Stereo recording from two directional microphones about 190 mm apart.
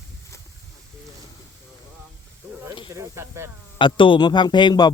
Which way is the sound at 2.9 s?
15° right (ahead or behind).